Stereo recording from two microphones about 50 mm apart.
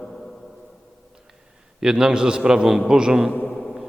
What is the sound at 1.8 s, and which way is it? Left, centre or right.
A man's voice, centre.